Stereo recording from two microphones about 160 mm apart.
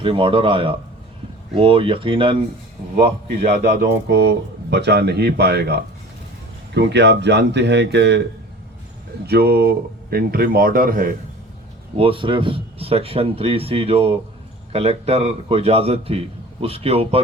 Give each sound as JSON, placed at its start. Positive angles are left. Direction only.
{"t": 0.0, "sound": "a man's voice", "side_deg": -35}
{"t": 3.6, "sound": "speech", "side_deg": -90}
{"t": 9.2, "sound": "speech", "side_deg": -85}
{"t": 11.9, "sound": "a man's voice", "side_deg": -35}